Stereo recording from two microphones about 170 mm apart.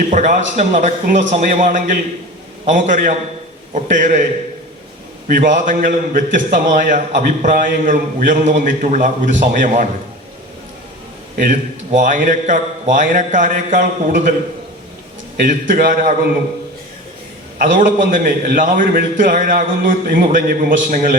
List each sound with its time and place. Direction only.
0.1 s a man's voice: 45° right (ahead or behind)
5.3 s a man's voice: 50° right (ahead or behind)
11.3 s a man's voice: 50° right (ahead or behind)
15.4 s a man's voice: 50° right (ahead or behind)
17.6 s a man's voice: 50° right (ahead or behind)